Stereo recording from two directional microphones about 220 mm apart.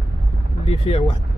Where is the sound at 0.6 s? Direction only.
25° left (ahead or behind).